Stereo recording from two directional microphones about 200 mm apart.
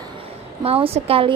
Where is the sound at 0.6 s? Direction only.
30° right (ahead or behind).